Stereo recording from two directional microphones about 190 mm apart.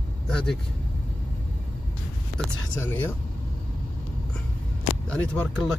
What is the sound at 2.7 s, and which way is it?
Speech, 10° left (ahead or behind).